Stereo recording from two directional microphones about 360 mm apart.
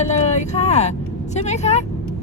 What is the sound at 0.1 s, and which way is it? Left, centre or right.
Vehicle, centre.